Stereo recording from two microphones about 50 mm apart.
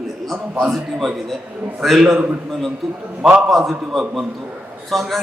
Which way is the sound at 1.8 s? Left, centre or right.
Centre.